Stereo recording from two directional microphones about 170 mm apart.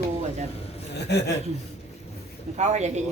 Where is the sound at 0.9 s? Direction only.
75° left (ahead or behind).